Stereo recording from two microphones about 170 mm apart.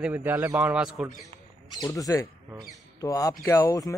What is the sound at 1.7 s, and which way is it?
Speech, 20° left (ahead or behind).